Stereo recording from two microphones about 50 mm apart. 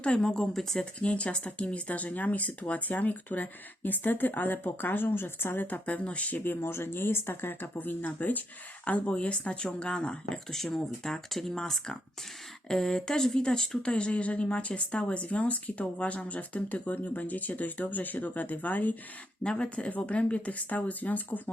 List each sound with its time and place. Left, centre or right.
0.0 s speech: centre
0.8 s speech: left
5.7 s speech: left
6.6 s speech: left
19.4 s speech: left